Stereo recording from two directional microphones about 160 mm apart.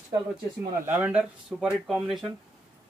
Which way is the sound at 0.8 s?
10° right (ahead or behind).